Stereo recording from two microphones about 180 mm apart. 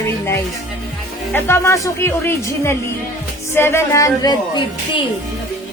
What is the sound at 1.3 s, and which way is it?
A woman's voice, 15° left (ahead or behind).